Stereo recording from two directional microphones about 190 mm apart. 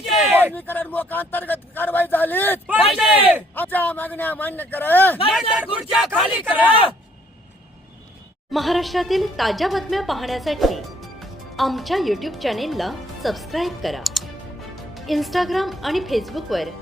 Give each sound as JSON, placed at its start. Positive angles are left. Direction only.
{"t": 0.1, "sound": "a sound", "side_deg": 0}
{"t": 0.5, "sound": "speech", "side_deg": 10}
{"t": 2.9, "sound": "a woman's voice", "side_deg": -5}
{"t": 3.5, "sound": "speech", "side_deg": 10}
{"t": 5.3, "sound": "a woman's voice", "side_deg": -5}
{"t": 6.7, "sound": "speech", "side_deg": 30}
{"t": 8.5, "sound": "a woman's voice", "side_deg": 0}